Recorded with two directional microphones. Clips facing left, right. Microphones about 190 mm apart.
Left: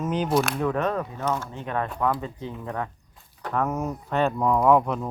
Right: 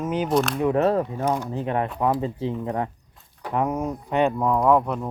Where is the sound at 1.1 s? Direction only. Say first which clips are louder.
Right 3 dB; 15° right (ahead or behind).